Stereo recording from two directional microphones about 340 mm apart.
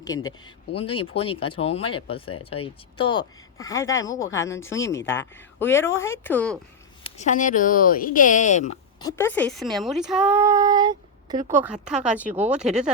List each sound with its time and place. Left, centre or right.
0.0 s speech: centre
7.0 s speech: left
9.0 s speech: centre